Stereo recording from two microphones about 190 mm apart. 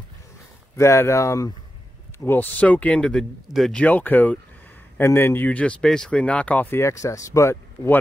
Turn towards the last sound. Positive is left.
turn(degrees=15)  # may be behind; listen again after turning